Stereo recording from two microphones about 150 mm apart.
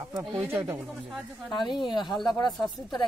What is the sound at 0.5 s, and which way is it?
Speech, 15° right (ahead or behind).